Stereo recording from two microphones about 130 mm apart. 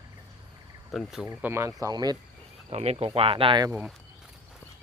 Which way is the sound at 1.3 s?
15° right (ahead or behind).